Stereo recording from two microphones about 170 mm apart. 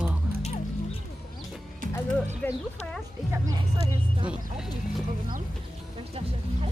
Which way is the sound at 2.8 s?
40° left (ahead or behind).